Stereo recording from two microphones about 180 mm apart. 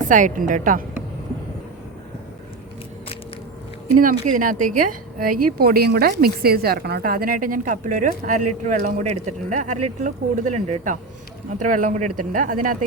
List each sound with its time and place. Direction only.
0.1 s speech: 45° right (ahead or behind)
3.9 s speech: 50° right (ahead or behind)